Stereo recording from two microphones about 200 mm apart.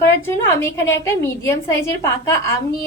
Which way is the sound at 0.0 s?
15° left (ahead or behind).